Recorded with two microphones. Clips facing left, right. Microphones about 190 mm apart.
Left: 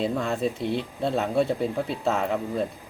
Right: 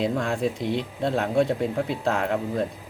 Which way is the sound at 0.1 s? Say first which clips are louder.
Right 1 dB; 5° left (ahead or behind).